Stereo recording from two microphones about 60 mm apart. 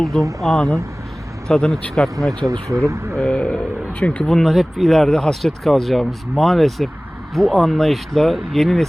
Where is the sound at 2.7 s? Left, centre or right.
Right.